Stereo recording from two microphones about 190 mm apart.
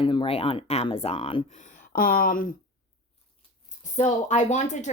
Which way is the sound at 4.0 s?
40° left (ahead or behind).